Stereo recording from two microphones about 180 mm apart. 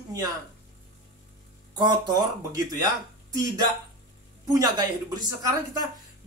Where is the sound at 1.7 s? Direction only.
25° right (ahead or behind).